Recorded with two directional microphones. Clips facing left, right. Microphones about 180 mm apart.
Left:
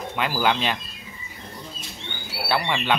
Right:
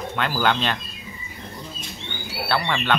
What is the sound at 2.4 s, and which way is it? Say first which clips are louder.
Speech: even; 10° left (ahead or behind).